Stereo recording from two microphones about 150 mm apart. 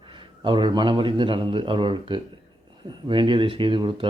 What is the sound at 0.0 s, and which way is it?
A man's voice, 35° right (ahead or behind).